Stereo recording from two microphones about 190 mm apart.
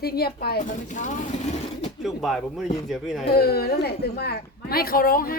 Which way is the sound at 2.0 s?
Centre (ahead or behind).